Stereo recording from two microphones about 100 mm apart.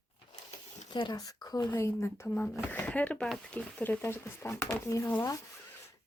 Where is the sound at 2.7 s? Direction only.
15° left (ahead or behind); by 5.1 s 30° left (ahead or behind).